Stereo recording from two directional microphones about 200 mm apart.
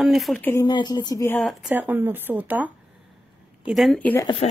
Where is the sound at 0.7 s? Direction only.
20° left (ahead or behind).